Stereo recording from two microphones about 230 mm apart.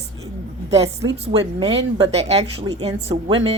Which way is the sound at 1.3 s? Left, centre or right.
Right.